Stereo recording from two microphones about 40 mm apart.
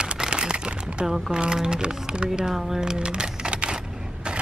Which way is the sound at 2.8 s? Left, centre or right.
Right.